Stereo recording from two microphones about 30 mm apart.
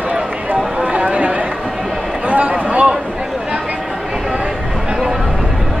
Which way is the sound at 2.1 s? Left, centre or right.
Right.